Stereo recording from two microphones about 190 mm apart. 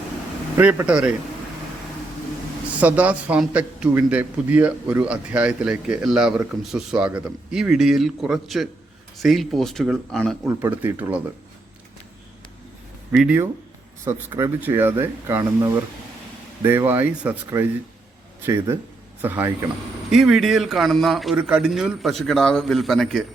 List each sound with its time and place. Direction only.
0.5 s speech: 10° right (ahead or behind)
2.8 s a man's voice: 10° right (ahead or behind)
10.6 s speech: 10° right (ahead or behind)
13.1 s speech: 5° right (ahead or behind)
20.1 s a man's voice: centre (ahead or behind)